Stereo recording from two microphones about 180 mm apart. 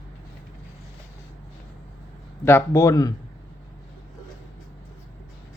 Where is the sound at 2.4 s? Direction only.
15° left (ahead or behind).